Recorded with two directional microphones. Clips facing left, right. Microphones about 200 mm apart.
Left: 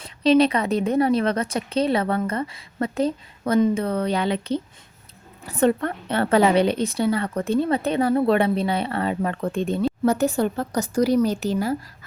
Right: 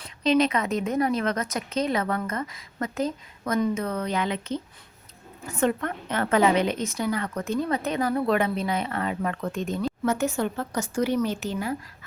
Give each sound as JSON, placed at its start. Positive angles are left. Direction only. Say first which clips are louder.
{"t": 0.0, "sound": "a woman's voice", "louder": "left 5 dB", "side_deg": 30}